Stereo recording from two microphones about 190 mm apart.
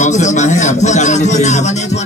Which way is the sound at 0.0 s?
40° left (ahead or behind).